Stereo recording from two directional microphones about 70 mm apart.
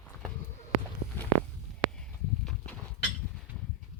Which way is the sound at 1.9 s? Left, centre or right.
Centre.